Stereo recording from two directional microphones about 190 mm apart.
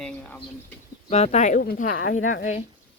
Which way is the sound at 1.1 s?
40° left (ahead or behind).